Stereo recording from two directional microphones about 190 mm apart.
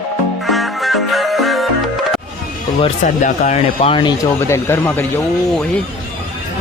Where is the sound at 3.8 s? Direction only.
30° left (ahead or behind).